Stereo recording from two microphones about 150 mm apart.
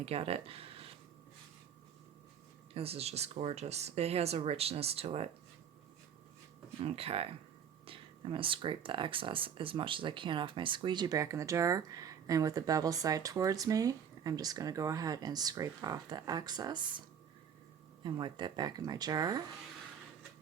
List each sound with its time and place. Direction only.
0.0 s speech: 40° right (ahead or behind)
2.7 s speech: 40° right (ahead or behind)
6.7 s speech: 40° right (ahead or behind)
18.0 s speech: 30° right (ahead or behind)